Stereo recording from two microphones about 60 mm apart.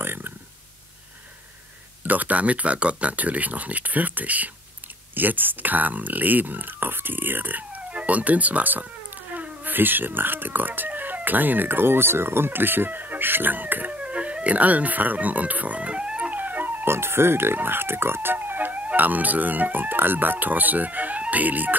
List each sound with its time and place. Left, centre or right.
0.0 s a sound: right
2.0 s speech: right
14.0 s music: centre
16.9 s speech: right